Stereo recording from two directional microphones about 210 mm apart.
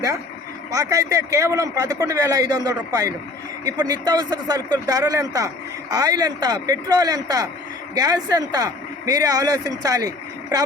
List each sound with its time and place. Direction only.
0.7 s a man's voice: 15° right (ahead or behind)